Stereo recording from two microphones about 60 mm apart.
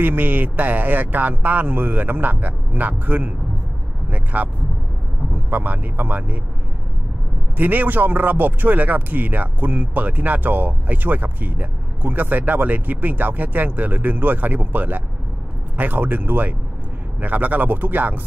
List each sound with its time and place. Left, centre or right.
0.0 s speech: right
7.5 s speech: right